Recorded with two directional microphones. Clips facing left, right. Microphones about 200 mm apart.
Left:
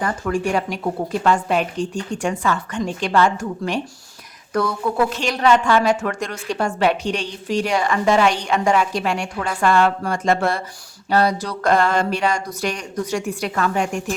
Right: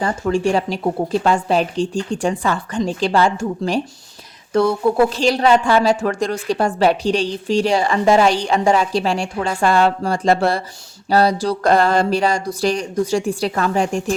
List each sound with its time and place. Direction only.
0.0 s speech: 25° right (ahead or behind)